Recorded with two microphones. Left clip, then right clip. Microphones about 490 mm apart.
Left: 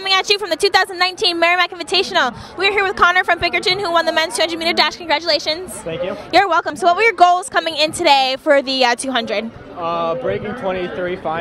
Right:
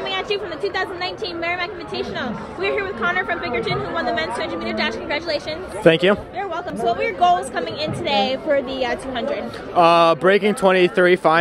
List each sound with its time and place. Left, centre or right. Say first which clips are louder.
0.0 s a woman's voice: left 7 dB; left
5.9 s speech: right 10 dB; right
6.3 s a woman's voice: left 12 dB; left
9.8 s speech: right 7 dB; right